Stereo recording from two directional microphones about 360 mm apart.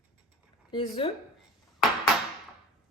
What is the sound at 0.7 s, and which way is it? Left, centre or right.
Speech, centre.